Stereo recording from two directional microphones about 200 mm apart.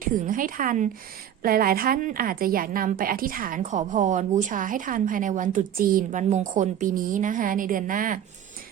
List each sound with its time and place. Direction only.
0.0 s a woman's voice: 40° right (ahead or behind)